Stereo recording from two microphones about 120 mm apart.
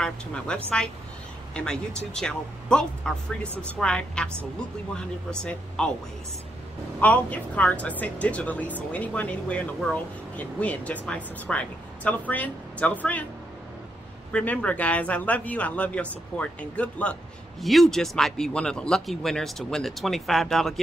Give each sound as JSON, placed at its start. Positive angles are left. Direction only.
{"t": 0.0, "sound": "speech", "side_deg": 5}
{"t": 7.0, "sound": "speech", "side_deg": 10}
{"t": 14.3, "sound": "speech", "side_deg": 10}